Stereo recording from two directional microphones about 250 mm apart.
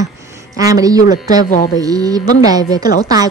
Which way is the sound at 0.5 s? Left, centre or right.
Centre.